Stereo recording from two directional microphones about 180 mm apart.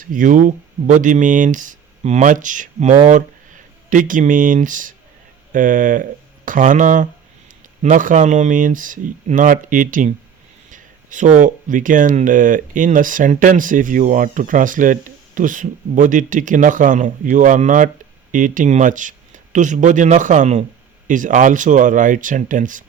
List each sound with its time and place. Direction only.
0.0 s speech: 50° right (ahead or behind)